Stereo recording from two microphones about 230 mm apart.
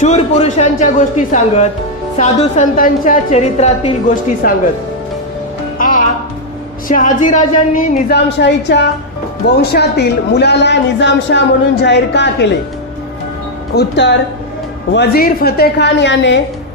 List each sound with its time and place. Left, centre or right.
0.0 s a woman's voice: left
5.8 s music: left
6.8 s a woman's voice: left
13.7 s speech: left